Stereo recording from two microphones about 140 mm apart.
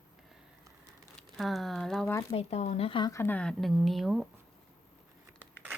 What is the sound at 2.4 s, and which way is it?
Speech, 50° left (ahead or behind).